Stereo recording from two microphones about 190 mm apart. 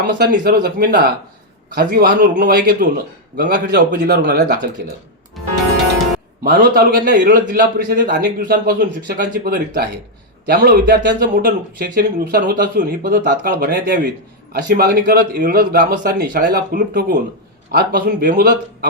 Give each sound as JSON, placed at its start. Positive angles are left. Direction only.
{"t": 0.1, "sound": "speech", "side_deg": -50}
{"t": 6.4, "sound": "speech", "side_deg": -50}